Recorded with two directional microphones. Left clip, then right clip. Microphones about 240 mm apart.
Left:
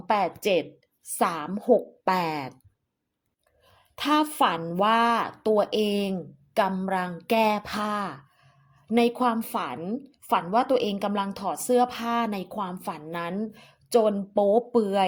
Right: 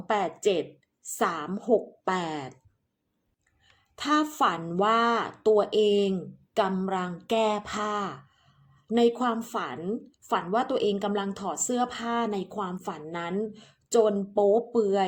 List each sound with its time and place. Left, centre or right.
0.1 s a woman's voice: left
3.9 s a woman's voice: left